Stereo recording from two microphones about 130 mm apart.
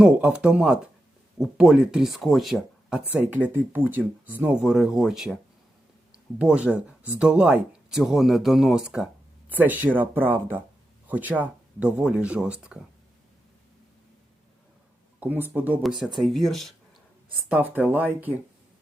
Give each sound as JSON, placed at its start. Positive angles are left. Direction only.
{"t": 0.0, "sound": "speech", "side_deg": -10}
{"t": 3.1, "sound": "speech", "side_deg": -15}
{"t": 15.2, "sound": "speech", "side_deg": -15}
{"t": 15.8, "sound": "speech", "side_deg": 0}
{"t": 17.5, "sound": "speech", "side_deg": -15}